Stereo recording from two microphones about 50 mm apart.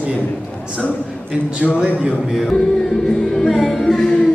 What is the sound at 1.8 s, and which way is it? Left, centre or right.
Speech, centre.